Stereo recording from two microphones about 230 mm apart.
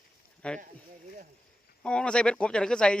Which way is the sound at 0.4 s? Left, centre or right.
Centre.